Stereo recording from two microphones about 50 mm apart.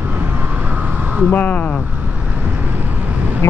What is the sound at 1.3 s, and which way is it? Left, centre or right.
Speech, left.